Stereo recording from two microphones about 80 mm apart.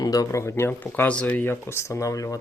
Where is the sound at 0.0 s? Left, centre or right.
Left.